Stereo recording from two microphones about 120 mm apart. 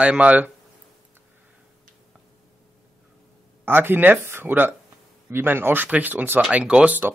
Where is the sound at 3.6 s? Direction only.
20° right (ahead or behind).